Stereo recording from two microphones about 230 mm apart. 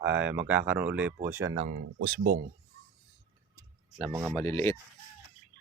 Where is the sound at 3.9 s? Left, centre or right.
Centre.